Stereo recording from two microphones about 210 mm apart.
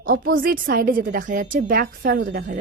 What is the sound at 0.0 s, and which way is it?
A woman's voice, 45° right (ahead or behind).